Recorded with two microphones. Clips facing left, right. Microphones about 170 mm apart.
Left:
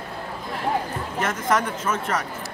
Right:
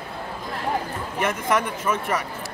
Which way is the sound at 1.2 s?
15° right (ahead or behind).